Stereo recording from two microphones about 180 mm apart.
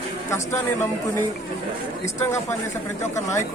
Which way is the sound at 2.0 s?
15° left (ahead or behind).